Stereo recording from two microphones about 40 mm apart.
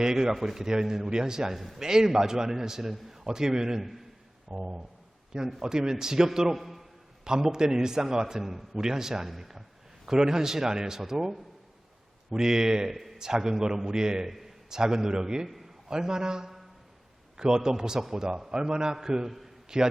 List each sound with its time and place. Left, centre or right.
0.0 s a man's voice: centre
1.5 s a man's voice: centre
1.8 s a man's voice: centre
5.3 s a man's voice: centre
6.5 s a man's voice: centre
7.3 s a man's voice: centre
10.1 s a man's voice: centre
12.9 s a man's voice: centre
14.3 s a sound: centre
14.8 s a man's voice: centre